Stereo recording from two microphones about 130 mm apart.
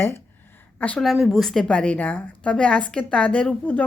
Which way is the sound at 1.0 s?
Centre (ahead or behind).